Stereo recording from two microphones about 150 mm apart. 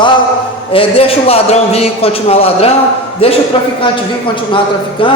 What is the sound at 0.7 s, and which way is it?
A man's voice, 40° left (ahead or behind).